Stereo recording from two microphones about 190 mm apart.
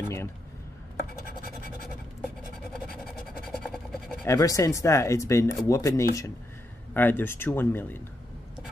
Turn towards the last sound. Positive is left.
turn(degrees=10)  # may be behind; listen again after turning